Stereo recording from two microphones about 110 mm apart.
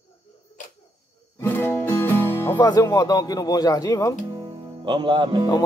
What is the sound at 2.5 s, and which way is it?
Speech, 35° left (ahead or behind).